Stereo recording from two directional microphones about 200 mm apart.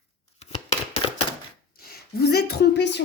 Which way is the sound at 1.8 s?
50° left (ahead or behind).